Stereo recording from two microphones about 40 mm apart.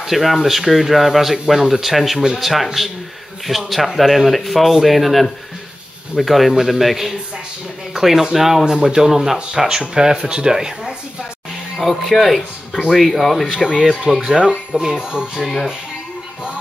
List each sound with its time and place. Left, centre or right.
0.0 s speech: centre
11.8 s speech: centre
13.6 s speech: centre